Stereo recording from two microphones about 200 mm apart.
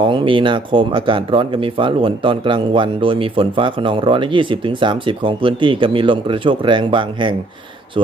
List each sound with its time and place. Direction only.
0.0 s speech: 25° right (ahead or behind)